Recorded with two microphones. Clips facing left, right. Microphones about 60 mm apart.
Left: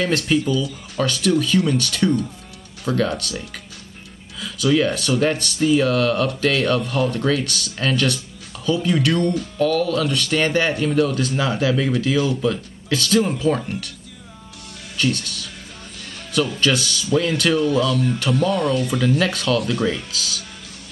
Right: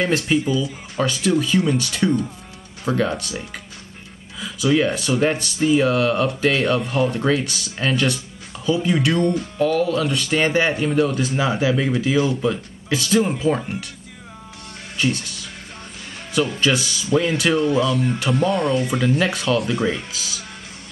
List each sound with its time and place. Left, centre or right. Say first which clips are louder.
0.0 s speech: even; centre
15.0 s speech: even; centre
16.4 s speech: even; centre
18.5 s speech: even; centre